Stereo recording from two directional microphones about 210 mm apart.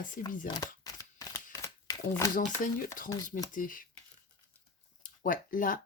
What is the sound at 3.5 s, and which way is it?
Speech, 40° left (ahead or behind).